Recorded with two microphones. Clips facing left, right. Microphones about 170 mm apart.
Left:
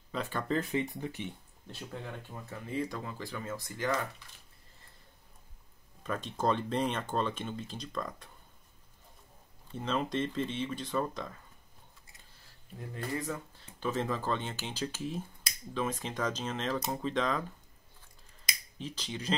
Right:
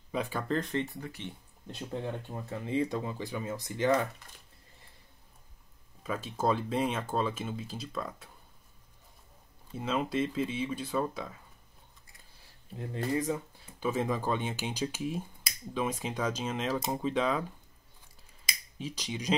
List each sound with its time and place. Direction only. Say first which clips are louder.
0.1 s speech: right 2 dB; 10° right (ahead or behind)
0.5 s speech: left 3 dB; 5° left (ahead or behind)
1.7 s speech: right 6 dB; 20° right (ahead or behind)
6.0 s speech: right 1 dB; 5° right (ahead or behind)
9.7 s speech: right 1 dB; 10° right (ahead or behind)
12.7 s speech: right 5 dB; 20° right (ahead or behind)
18.4 s finger snapping: right 2 dB; 10° right (ahead or behind)